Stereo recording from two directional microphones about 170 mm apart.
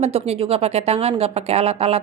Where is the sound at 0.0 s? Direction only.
35° right (ahead or behind).